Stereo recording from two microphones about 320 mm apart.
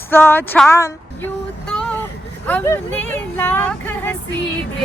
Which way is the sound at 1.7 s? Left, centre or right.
Centre.